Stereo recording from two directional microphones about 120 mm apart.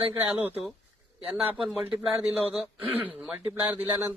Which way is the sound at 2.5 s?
10° right (ahead or behind).